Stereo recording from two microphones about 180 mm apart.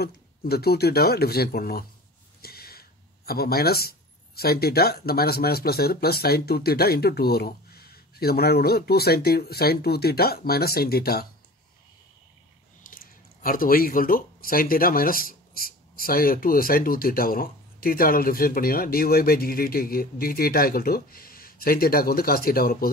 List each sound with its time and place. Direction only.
0.0 s speech: 60° left (ahead or behind)
2.4 s a sound: 60° left (ahead or behind)
4.4 s speech: 60° left (ahead or behind)
12.8 s speech: 50° left (ahead or behind)